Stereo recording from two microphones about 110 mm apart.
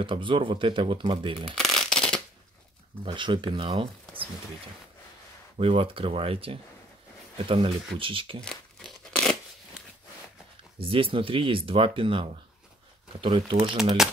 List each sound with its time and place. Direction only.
0.0 s speech: 50° right (ahead or behind)
1.5 s shuffling cards: 5° left (ahead or behind)
3.0 s speech: 45° right (ahead or behind)
5.6 s speech: 55° right (ahead or behind)
9.1 s a sound: 5° left (ahead or behind)
10.8 s speech: 55° right (ahead or behind)
14.0 s speech: 5° right (ahead or behind)